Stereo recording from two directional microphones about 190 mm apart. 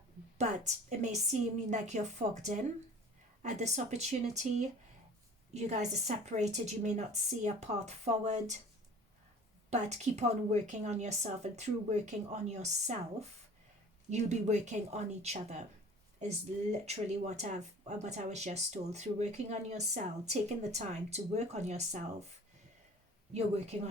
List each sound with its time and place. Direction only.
0.3 s speech: 40° right (ahead or behind)
5.5 s speech: 35° right (ahead or behind)
9.6 s speech: 35° right (ahead or behind)
14.1 s speech: 35° right (ahead or behind)
23.3 s speech: 35° right (ahead or behind)